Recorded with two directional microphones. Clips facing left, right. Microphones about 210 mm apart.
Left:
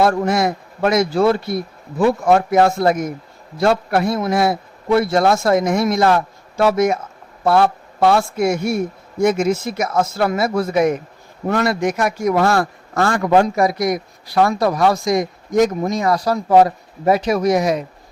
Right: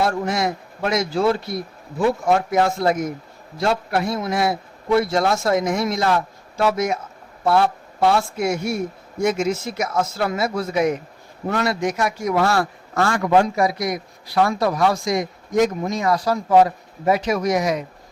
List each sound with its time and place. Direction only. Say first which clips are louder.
0.0 s a man's voice: left 5 dB; 55° left (ahead or behind); by 17.7 s 30° left (ahead or behind)